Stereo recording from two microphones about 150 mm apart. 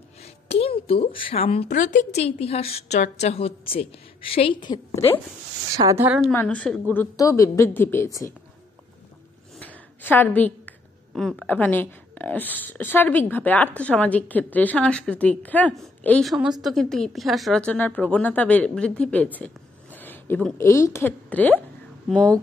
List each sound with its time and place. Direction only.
0.2 s a woman's voice: 40° left (ahead or behind)
1.7 s a woman's voice: 55° left (ahead or behind); by 4.7 s 35° left (ahead or behind)
5.8 s a woman's voice: 20° right (ahead or behind)
6.0 s a woman's voice: 5° right (ahead or behind)
6.3 s a woman's voice: 10° left (ahead or behind)
7.2 s a woman's voice: 20° left (ahead or behind)
9.6 s a sound: 10° left (ahead or behind)
11.1 s a woman's voice: 5° left (ahead or behind)